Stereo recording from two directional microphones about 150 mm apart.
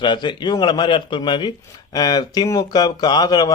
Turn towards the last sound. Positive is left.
turn(degrees=25)  # may be behind; listen again after turning